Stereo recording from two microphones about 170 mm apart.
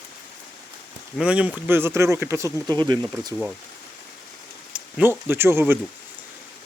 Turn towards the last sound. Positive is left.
turn(degrees=-15)  # may be behind; listen again after turning